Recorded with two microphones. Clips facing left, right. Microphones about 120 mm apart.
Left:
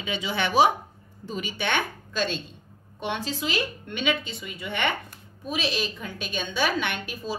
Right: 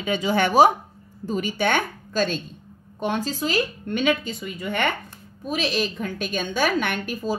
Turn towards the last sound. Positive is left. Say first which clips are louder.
# right 5 dB
turn(degrees=-45)  # may be behind; listen again after turning